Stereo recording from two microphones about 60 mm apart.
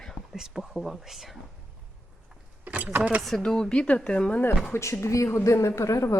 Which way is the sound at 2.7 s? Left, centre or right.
Right.